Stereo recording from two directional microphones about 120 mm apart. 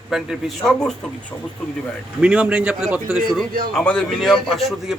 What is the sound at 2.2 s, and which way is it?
A man's voice, 10° right (ahead or behind).